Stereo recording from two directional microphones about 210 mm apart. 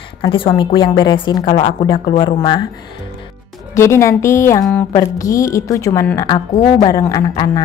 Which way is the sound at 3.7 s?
15° left (ahead or behind).